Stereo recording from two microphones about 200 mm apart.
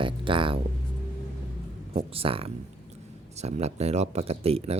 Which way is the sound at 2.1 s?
30° right (ahead or behind).